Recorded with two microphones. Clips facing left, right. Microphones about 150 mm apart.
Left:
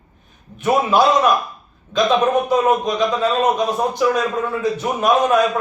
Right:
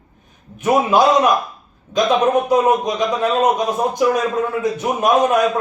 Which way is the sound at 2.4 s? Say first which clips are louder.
Right 1 dB; 15° right (ahead or behind).